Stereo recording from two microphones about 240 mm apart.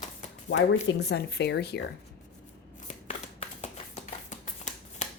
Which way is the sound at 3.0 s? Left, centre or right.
Left.